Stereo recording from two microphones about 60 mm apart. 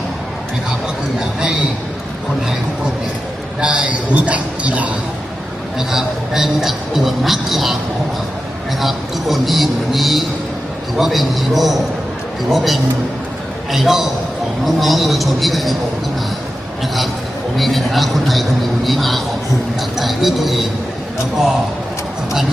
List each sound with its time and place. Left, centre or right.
3.6 s a man's voice: right
5.9 s a man's voice: centre
8.8 s a man's voice: centre
17.6 s a man's voice: centre